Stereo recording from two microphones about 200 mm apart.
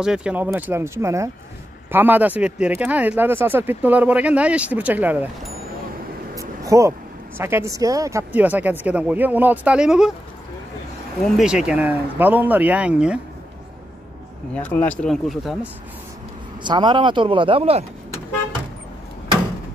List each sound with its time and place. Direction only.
0.0 s speech: 5° right (ahead or behind)
6.3 s a sound: 15° right (ahead or behind)
7.3 s speech: 10° right (ahead or behind)
11.3 s speech: 5° right (ahead or behind)
14.5 s speech: 5° left (ahead or behind)
16.6 s speech: 25° right (ahead or behind)